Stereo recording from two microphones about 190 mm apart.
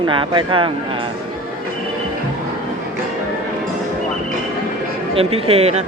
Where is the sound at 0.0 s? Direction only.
25° right (ahead or behind).